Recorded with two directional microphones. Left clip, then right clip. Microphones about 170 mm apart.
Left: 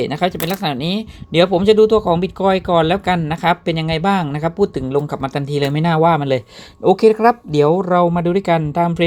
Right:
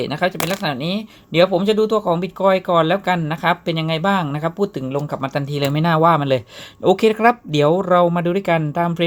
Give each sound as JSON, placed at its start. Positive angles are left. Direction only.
{"t": 0.0, "sound": "speech", "side_deg": 25}
{"t": 6.8, "sound": "speech", "side_deg": 0}